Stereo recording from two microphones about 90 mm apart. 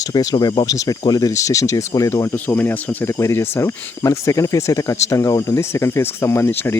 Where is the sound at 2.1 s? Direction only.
20° left (ahead or behind).